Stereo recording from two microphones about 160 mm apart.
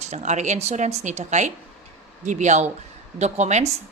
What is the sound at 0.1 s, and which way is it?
A woman's voice, 45° right (ahead or behind).